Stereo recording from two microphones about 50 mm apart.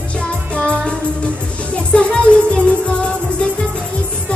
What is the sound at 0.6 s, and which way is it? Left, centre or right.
Music, left.